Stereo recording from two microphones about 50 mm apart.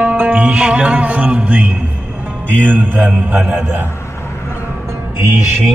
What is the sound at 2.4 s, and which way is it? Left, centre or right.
A man's voice, right.